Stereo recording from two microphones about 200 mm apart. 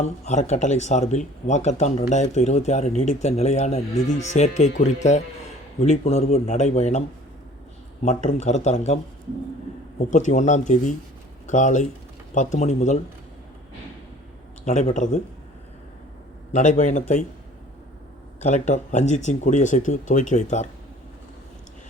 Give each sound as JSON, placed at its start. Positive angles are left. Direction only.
{"t": 0.0, "sound": "speech", "side_deg": 35}
{"t": 8.0, "sound": "speech", "side_deg": 35}
{"t": 10.1, "sound": "speech", "side_deg": 35}
{"t": 14.6, "sound": "speech", "side_deg": 35}
{"t": 16.5, "sound": "speech", "side_deg": 35}
{"t": 18.3, "sound": "speech", "side_deg": 35}